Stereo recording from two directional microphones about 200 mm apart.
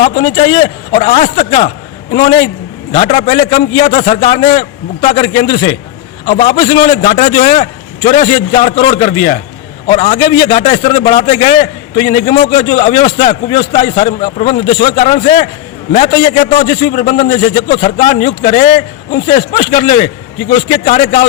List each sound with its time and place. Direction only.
0.0 s a man's voice: 30° left (ahead or behind)
2.9 s a man's voice: 35° left (ahead or behind)
21.0 s a man's voice: 40° left (ahead or behind)